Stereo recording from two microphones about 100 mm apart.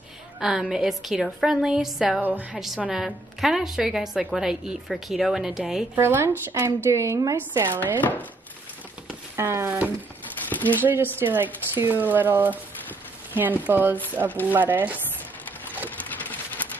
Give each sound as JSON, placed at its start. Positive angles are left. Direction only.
{"t": 0.4, "sound": "a woman's voice", "side_deg": -5}
{"t": 5.9, "sound": "a woman's voice", "side_deg": -25}
{"t": 9.4, "sound": "a woman's voice", "side_deg": -25}
{"t": 10.5, "sound": "a sound", "side_deg": 15}
{"t": 10.8, "sound": "a woman's voice", "side_deg": -20}
{"t": 14.2, "sound": "stir", "side_deg": -35}
{"t": 14.5, "sound": "a woman's voice", "side_deg": -20}
{"t": 16.2, "sound": "a sound", "side_deg": 15}